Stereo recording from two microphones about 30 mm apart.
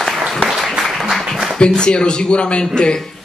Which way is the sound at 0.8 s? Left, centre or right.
Centre.